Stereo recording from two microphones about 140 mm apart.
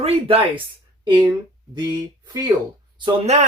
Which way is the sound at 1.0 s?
30° right (ahead or behind).